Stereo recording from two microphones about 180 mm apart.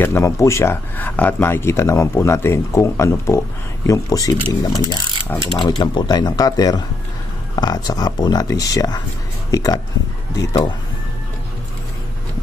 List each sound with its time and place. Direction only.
0.0 s speech: 15° left (ahead or behind)